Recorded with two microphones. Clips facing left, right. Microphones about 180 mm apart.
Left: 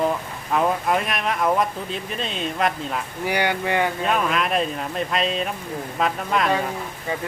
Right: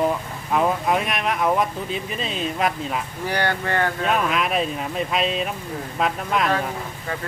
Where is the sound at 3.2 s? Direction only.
15° left (ahead or behind).